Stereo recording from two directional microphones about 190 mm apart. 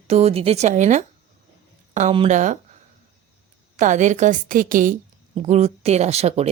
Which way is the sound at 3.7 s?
40° right (ahead or behind).